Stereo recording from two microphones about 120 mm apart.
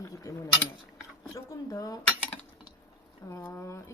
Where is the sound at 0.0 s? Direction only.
30° left (ahead or behind).